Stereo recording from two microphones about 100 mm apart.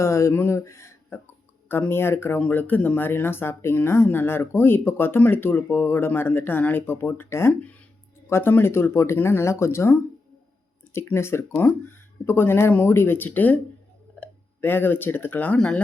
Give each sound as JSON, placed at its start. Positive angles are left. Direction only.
{"t": 0.0, "sound": "speech", "side_deg": 30}
{"t": 15.5, "sound": "speech", "side_deg": 5}